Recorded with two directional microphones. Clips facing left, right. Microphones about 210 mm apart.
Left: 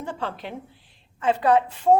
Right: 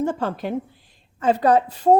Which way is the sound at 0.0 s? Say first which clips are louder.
Right 8 dB; 45° right (ahead or behind).